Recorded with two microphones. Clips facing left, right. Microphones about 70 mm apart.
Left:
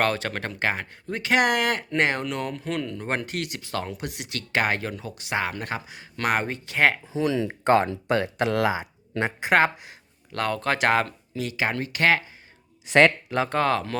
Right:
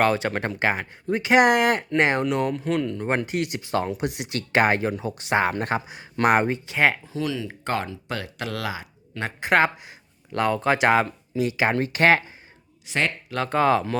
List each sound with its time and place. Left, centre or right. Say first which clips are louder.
0.0 s speech: right 3 dB; centre
5.1 s speech: right 5 dB; right
6.5 s speech: right 1 dB; centre
7.0 s speech: left 2 dB; left
7.3 s speech: left 8 dB; left
9.4 s speech: right 1 dB; centre
10.3 s speech: right 4 dB; centre; by 12.2 s right
12.9 s speech: left 8 dB; left
13.5 s speech: right 6 dB; centre